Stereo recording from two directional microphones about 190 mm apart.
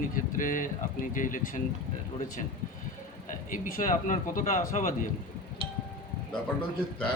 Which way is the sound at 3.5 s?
45° left (ahead or behind).